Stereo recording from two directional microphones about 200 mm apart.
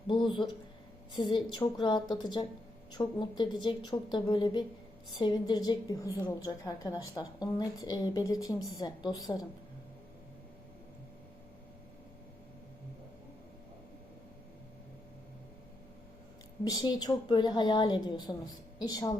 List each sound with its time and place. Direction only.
0.1 s a woman's voice: 25° left (ahead or behind)
16.6 s a woman's voice: 20° left (ahead or behind)